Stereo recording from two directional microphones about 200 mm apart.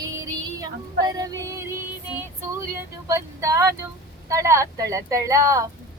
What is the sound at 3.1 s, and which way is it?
A woman's voice, 15° right (ahead or behind).